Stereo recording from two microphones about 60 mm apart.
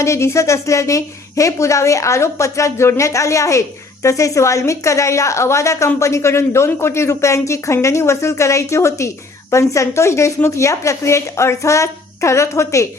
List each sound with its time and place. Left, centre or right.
0.0 s a woman's voice: left